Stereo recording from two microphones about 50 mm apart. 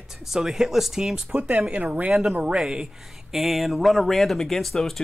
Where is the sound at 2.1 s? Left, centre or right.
Centre.